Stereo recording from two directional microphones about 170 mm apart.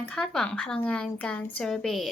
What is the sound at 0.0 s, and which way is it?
A woman's voice, 5° left (ahead or behind).